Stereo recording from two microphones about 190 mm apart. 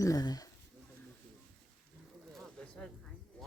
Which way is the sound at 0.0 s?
20° left (ahead or behind).